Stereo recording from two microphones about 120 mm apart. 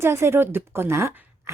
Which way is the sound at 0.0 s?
20° right (ahead or behind).